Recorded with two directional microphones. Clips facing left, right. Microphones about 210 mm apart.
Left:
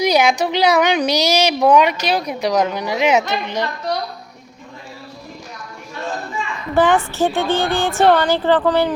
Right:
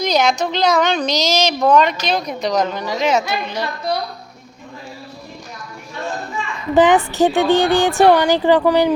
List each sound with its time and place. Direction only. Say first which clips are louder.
0.0 s a woman's voice: left 2 dB; 10° left (ahead or behind)
3.5 s a woman's voice: even; 10° right (ahead or behind)
6.7 s speech: right 3 dB; 15° right (ahead or behind)